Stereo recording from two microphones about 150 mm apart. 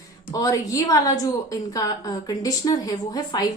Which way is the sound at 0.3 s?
20° left (ahead or behind).